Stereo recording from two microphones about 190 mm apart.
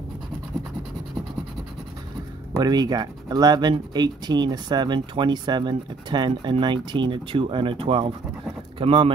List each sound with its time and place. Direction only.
2.6 s speech: 20° right (ahead or behind)